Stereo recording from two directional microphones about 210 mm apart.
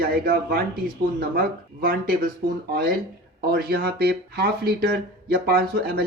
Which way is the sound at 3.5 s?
45° right (ahead or behind).